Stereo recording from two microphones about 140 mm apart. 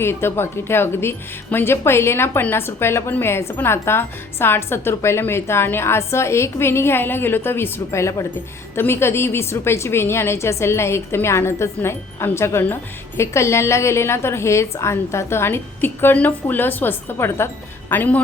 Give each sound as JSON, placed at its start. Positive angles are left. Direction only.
{"t": 0.0, "sound": "a woman's voice", "side_deg": 15}